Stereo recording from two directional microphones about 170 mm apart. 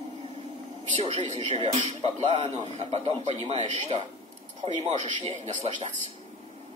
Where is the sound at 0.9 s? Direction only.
35° right (ahead or behind).